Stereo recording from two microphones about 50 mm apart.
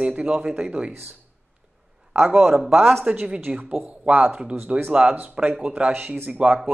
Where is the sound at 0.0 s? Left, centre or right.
Right.